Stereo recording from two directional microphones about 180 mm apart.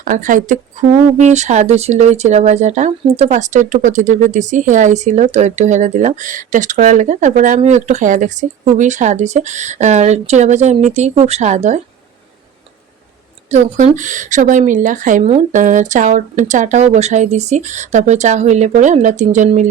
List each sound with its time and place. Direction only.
0.0 s a woman's voice: 45° right (ahead or behind)
13.5 s a woman's voice: 40° right (ahead or behind)